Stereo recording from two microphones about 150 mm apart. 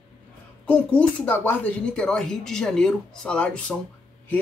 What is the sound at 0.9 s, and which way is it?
Speech, 10° left (ahead or behind).